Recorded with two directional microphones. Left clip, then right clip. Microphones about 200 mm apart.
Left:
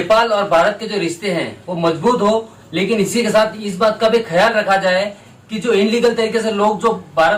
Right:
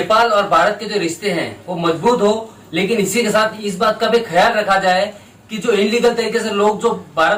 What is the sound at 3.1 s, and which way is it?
A man's voice, centre (ahead or behind).